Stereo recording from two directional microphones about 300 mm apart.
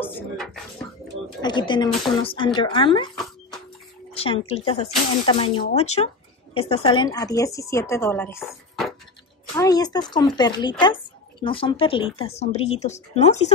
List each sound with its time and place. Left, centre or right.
0.0 s speech: centre
4.1 s a woman's voice: centre
9.6 s a woman's voice: centre